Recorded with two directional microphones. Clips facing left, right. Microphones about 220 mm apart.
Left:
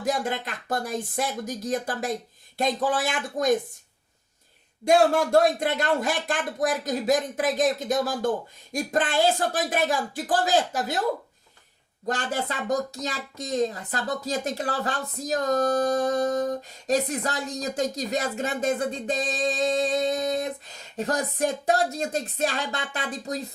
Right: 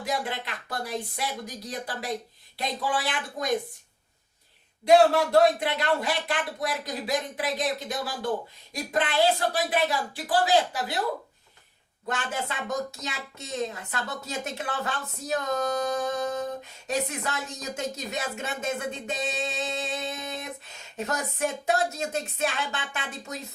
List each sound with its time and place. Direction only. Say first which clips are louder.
0.0 s speech: left 4 dB; 45° left (ahead or behind)
4.9 s speech: even; 45° left (ahead or behind)
12.0 s speech: left 4 dB; 35° left (ahead or behind)